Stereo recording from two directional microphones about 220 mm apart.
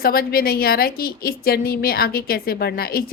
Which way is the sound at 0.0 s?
45° left (ahead or behind).